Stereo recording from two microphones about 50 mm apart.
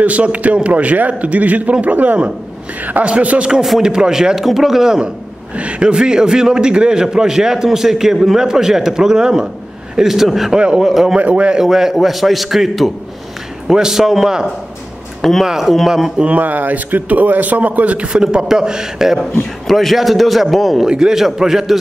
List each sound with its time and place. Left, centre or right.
0.0 s a man's voice: right; by 5.0 s centre
5.6 s a man's voice: right; by 11.1 s centre
11.1 s a man's voice: right
11.5 s a man's voice: centre
16.2 s a man's voice: right; by 19.1 s centre
19.7 s a man's voice: centre
20.8 s a man's voice: centre